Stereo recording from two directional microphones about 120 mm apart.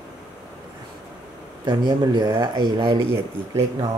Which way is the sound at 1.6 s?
35° right (ahead or behind).